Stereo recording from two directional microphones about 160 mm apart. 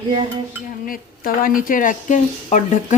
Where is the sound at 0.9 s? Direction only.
60° left (ahead or behind).